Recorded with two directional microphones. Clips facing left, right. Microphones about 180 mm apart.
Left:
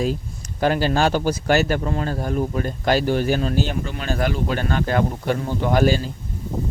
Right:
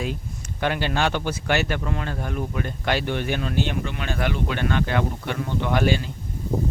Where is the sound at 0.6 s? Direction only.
35° left (ahead or behind).